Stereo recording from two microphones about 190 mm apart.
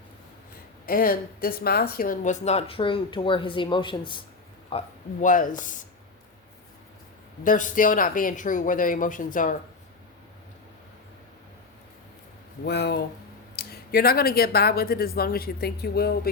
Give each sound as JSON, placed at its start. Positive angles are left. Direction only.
{"t": 0.9, "sound": "speech", "side_deg": 50}
{"t": 5.2, "sound": "speech", "side_deg": 45}
{"t": 7.4, "sound": "speech", "side_deg": 45}
{"t": 12.6, "sound": "speech", "side_deg": 60}